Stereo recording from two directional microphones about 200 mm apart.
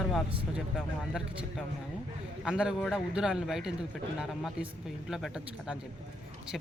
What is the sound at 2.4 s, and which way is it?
Speech, 5° right (ahead or behind).